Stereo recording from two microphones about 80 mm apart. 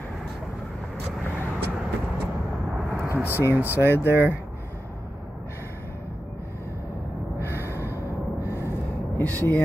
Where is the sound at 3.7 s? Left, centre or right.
Right.